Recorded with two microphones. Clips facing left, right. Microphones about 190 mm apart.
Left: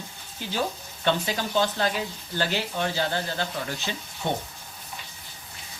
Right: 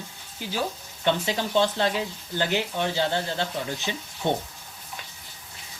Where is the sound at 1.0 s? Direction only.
25° right (ahead or behind).